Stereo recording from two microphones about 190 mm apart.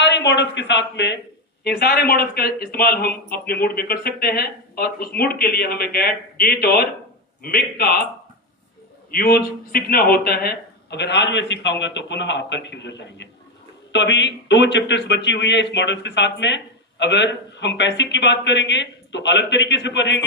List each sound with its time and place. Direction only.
0.0 s speech: 65° left (ahead or behind)
1.6 s a man's voice: 55° left (ahead or behind)
9.1 s speech: 50° left (ahead or behind); by 20.2 s 70° left (ahead or behind)